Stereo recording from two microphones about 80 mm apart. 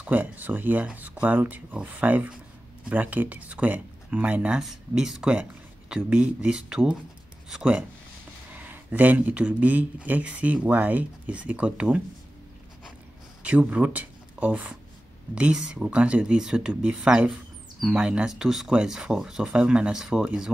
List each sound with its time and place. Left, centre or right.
0.0 s speech: right
8.5 s speech: right
13.4 s speech: centre